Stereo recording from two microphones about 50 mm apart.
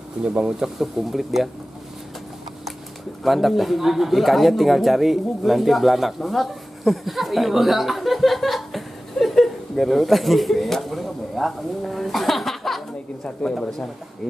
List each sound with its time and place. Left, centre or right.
0.2 s speech: right
0.6 s speech: centre
3.3 s speech: centre